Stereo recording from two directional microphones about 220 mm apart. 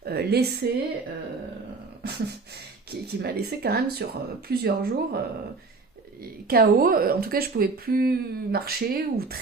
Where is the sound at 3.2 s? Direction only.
45° right (ahead or behind).